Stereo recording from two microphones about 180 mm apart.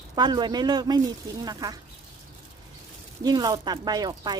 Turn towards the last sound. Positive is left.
turn(degrees=-25)  # may be behind; listen again after turning